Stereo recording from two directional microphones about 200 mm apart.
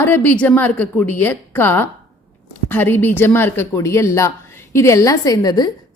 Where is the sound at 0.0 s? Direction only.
10° left (ahead or behind).